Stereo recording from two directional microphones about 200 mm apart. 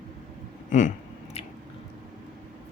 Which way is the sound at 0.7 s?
40° left (ahead or behind).